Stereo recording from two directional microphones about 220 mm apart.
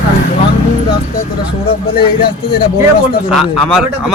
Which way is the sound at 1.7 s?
25° left (ahead or behind).